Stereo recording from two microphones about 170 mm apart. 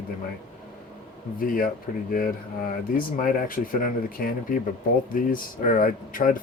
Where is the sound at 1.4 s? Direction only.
55° left (ahead or behind).